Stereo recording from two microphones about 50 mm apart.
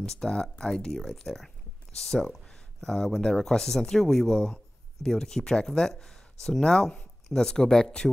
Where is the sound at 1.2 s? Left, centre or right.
Centre.